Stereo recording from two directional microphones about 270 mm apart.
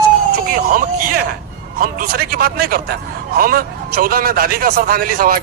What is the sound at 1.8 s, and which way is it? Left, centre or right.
A man's voice, right.